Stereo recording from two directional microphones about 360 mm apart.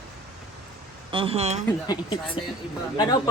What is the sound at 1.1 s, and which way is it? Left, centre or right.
Speech, centre.